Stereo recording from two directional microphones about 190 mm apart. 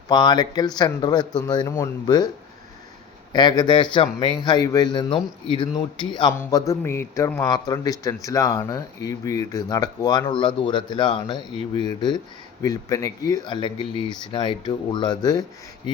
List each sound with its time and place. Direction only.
0.1 s speech: 20° left (ahead or behind)
3.3 s speech: 20° left (ahead or behind)